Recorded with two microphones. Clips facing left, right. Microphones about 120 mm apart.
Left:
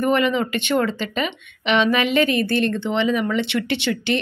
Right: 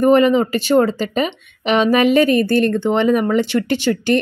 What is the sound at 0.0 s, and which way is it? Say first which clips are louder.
Speech: right 7 dB; 40° right (ahead or behind).